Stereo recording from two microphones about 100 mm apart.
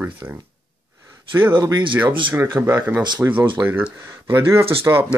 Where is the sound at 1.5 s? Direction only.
50° right (ahead or behind).